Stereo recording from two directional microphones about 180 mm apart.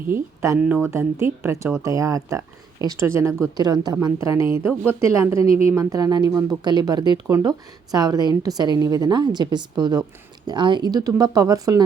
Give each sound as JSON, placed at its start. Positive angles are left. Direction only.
{"t": 0.0, "sound": "a woman's voice", "side_deg": -15}